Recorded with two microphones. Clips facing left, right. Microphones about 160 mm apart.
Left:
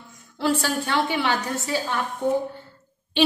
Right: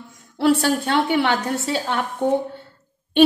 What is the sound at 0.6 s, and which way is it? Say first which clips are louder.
A woman's voice: right 4 dB; 60° right (ahead or behind).